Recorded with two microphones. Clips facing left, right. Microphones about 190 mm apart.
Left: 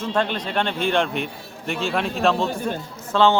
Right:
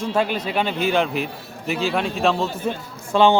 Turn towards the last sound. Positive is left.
turn(degrees=-15)  # may be behind; listen again after turning